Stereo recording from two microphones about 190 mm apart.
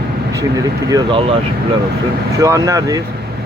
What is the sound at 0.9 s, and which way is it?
Speech, 25° right (ahead or behind).